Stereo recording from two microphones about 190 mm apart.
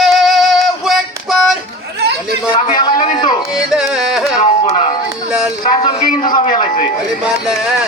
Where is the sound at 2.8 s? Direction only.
25° left (ahead or behind).